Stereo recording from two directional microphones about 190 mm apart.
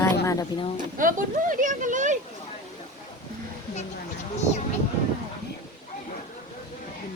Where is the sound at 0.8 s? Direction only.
45° right (ahead or behind).